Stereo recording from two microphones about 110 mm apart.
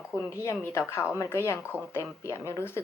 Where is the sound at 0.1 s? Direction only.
25° left (ahead or behind).